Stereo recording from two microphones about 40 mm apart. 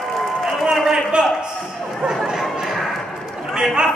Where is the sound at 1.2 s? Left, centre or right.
Right.